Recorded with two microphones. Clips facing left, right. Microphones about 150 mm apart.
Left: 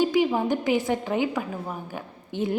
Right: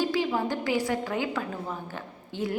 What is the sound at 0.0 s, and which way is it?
A woman's voice, 20° left (ahead or behind).